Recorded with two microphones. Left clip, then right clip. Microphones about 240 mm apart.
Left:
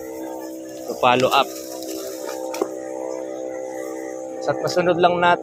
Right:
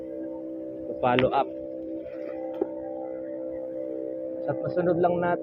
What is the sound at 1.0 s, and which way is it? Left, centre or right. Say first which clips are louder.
Speech: left 7 dB; centre.